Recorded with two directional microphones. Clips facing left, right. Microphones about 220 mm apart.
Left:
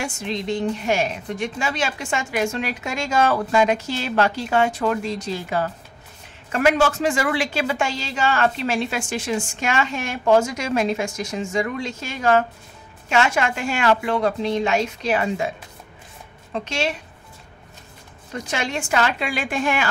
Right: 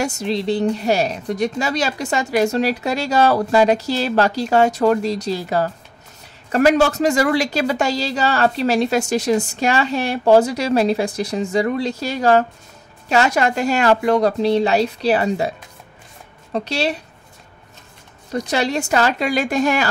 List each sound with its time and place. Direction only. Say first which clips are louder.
0.0 s a woman's voice: right 6 dB; 40° right (ahead or behind)
16.5 s a woman's voice: right 4 dB; 35° right (ahead or behind)
18.3 s a woman's voice: right 6 dB; 35° right (ahead or behind)